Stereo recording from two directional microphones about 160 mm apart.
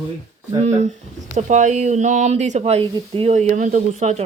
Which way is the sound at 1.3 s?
50° right (ahead or behind).